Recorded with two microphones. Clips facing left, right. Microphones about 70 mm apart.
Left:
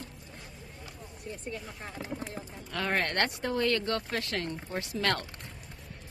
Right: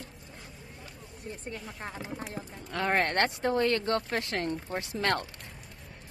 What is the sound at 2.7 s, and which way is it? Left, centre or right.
Speech, right.